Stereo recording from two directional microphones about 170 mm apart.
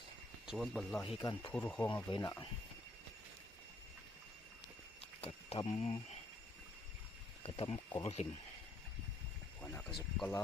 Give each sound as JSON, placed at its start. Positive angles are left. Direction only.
{"t": 0.4, "sound": "speech", "side_deg": 0}
{"t": 1.2, "sound": "speech", "side_deg": 20}
{"t": 1.5, "sound": "speech", "side_deg": 10}
{"t": 2.0, "sound": "speech", "side_deg": 25}
{"t": 4.9, "sound": "a sound", "side_deg": 35}
{"t": 7.4, "sound": "speech", "side_deg": 35}
{"t": 9.6, "sound": "speech", "side_deg": 10}